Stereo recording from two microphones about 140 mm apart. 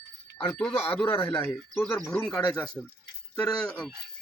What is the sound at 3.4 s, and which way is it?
Speech, 10° left (ahead or behind).